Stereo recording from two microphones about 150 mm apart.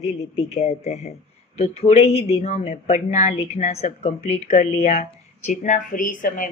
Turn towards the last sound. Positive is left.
turn(degrees=65)  # may be behind; listen again after turning